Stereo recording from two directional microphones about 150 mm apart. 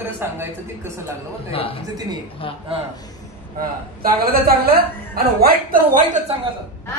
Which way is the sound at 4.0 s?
80° right.